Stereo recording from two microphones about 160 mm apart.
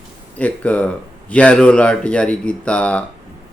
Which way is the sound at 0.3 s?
10° left (ahead or behind).